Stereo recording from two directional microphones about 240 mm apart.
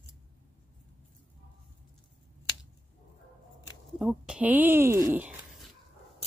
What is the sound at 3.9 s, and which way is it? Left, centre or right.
Speech, centre.